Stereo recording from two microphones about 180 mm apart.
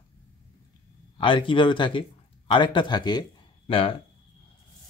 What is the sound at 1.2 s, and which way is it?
Speech, 30° left (ahead or behind).